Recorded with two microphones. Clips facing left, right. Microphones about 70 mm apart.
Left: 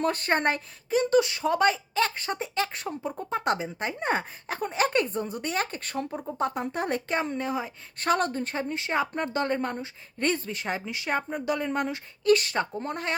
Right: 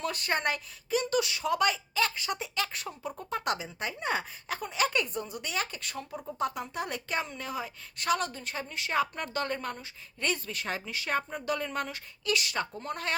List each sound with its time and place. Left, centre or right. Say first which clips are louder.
0.0 s speech: left 6 dB; left
6.1 s speech: left 1 dB; left
7.9 s speech: left 5 dB; left
12.2 s speech: left 8 dB; left